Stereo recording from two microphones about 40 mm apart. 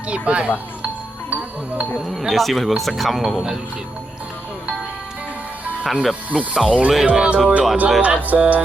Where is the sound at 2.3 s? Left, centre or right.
Centre.